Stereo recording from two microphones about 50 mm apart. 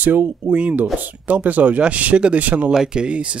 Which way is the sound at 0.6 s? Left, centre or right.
Right.